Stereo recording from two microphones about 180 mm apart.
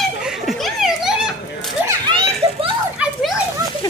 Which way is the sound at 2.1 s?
30° right (ahead or behind).